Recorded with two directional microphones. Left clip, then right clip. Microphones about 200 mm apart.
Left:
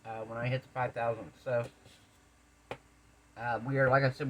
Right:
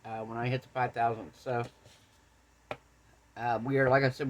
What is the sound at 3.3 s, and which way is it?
Speech, 60° right (ahead or behind).